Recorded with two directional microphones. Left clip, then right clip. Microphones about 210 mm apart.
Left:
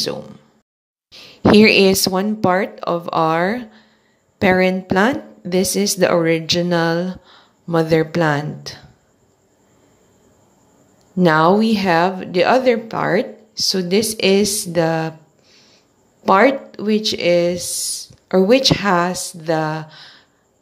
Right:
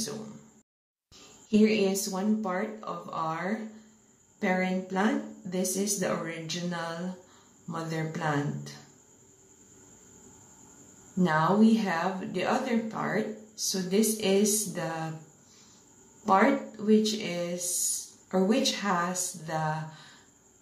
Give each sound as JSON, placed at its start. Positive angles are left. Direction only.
{"t": 1.5, "sound": "speech", "side_deg": 45}
{"t": 11.1, "sound": "a woman's voice", "side_deg": 45}
{"t": 16.3, "sound": "a woman's voice", "side_deg": 40}